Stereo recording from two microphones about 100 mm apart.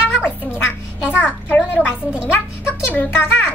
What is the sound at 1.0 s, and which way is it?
Speech, 20° left (ahead or behind).